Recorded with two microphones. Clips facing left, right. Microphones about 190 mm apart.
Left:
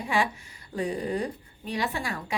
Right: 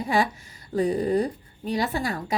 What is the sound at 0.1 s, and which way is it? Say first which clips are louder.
A woman's voice: right 3 dB; 40° right (ahead or behind).